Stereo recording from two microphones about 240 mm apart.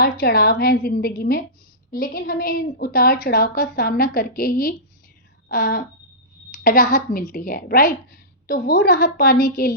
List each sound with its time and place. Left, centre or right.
0.0 s a woman's voice: left